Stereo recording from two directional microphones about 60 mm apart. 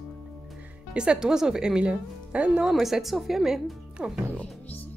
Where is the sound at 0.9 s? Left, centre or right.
Centre.